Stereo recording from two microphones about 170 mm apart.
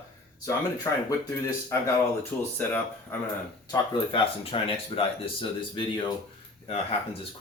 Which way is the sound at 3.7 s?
30° left (ahead or behind).